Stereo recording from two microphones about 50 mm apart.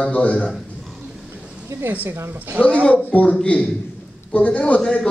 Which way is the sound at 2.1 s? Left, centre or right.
Right.